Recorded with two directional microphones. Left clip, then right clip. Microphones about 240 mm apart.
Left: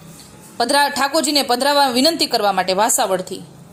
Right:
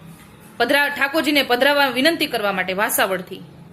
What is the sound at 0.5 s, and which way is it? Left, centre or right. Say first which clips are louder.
A woman's voice: left 2 dB; left.